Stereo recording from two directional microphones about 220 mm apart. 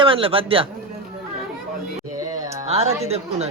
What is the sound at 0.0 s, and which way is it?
Speech, 25° right (ahead or behind).